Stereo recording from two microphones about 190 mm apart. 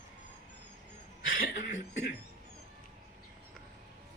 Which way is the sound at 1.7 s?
65° left (ahead or behind).